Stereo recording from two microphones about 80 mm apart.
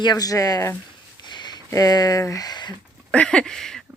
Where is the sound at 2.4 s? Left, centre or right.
Left.